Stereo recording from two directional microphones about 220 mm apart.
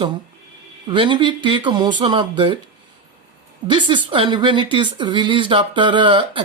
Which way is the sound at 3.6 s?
20° right (ahead or behind).